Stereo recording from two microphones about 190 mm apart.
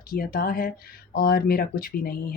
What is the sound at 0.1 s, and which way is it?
Speech, 55° left (ahead or behind).